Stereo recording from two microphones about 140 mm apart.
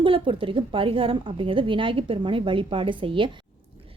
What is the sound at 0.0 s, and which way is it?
A woman's voice, 40° right (ahead or behind).